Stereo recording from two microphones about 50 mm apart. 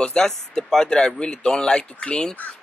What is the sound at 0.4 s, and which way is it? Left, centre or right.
Speech, centre.